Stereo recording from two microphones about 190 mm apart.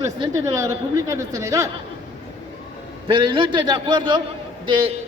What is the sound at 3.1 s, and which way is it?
Speech, 25° right (ahead or behind).